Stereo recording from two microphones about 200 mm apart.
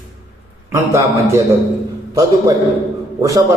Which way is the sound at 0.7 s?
15° right (ahead or behind).